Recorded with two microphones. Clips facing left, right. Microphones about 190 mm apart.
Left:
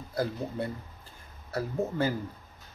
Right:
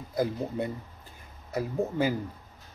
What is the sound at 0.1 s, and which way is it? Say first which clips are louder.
Speech: right 3 dB; 20° right (ahead or behind).